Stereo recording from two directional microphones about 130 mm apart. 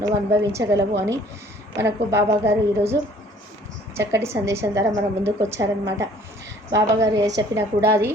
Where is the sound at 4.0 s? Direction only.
20° right (ahead or behind).